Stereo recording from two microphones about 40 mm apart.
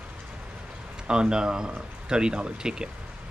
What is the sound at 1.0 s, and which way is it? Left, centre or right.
Speech, right.